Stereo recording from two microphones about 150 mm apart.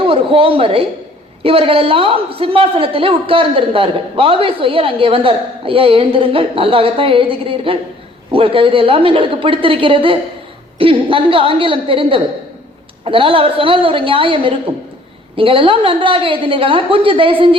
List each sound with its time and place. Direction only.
0.0 s a woman's voice: 35° right (ahead or behind)